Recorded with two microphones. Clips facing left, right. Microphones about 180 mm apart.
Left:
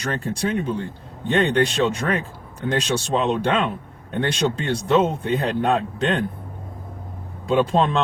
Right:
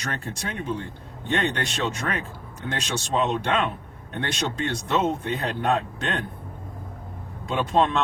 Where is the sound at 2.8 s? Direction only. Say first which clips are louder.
Left 1 dB; 30° left (ahead or behind).